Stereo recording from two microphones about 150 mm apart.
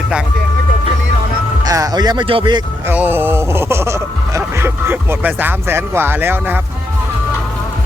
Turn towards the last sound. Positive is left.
turn(degrees=-15)  # may be behind; listen again after turning